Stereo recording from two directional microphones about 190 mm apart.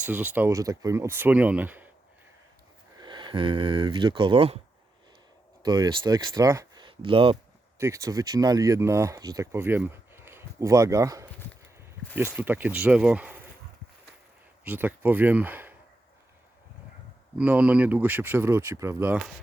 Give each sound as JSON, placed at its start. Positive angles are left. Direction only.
{"t": 0.0, "sound": "speech", "side_deg": -10}
{"t": 3.0, "sound": "speech", "side_deg": -25}
{"t": 5.6, "sound": "speech", "side_deg": -20}
{"t": 7.8, "sound": "speech", "side_deg": -15}
{"t": 14.6, "sound": "speech", "side_deg": -10}
{"t": 17.3, "sound": "speech", "side_deg": -5}